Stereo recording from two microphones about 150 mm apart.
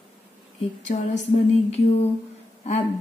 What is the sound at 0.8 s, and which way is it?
Speech, 50° left (ahead or behind).